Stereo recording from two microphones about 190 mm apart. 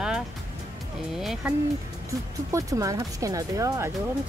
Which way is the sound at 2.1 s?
15° right (ahead or behind).